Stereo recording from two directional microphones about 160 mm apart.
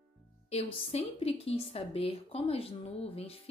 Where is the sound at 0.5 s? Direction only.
40° left (ahead or behind).